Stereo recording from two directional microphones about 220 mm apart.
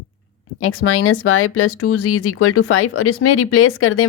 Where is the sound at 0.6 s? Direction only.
70° left (ahead or behind).